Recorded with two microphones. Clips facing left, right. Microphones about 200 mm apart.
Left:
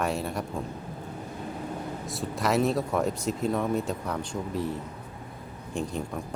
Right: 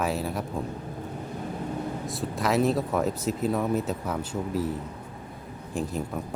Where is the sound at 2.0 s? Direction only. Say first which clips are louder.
Left 1 dB; centre (ahead or behind).